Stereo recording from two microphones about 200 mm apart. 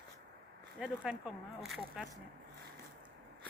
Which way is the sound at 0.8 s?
5° right (ahead or behind).